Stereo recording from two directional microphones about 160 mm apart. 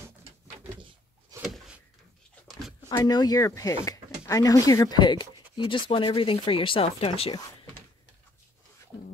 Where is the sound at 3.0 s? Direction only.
25° left (ahead or behind).